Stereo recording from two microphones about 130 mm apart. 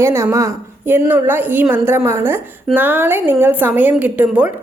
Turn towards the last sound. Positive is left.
turn(degrees=-10)  # may be behind; listen again after turning